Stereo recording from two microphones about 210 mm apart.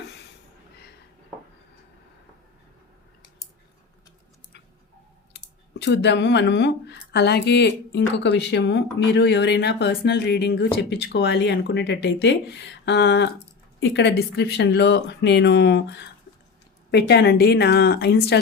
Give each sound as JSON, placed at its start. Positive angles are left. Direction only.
{"t": 5.8, "sound": "speech", "side_deg": 55}